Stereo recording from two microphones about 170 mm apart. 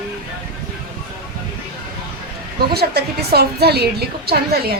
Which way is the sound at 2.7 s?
70° right (ahead or behind).